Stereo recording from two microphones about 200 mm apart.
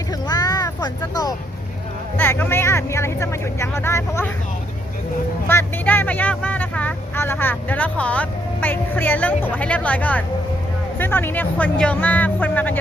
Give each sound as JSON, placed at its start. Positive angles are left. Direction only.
{"t": 0.1, "sound": "vehicle", "side_deg": 20}
{"t": 2.1, "sound": "speech", "side_deg": 10}
{"t": 5.5, "sound": "speech", "side_deg": 10}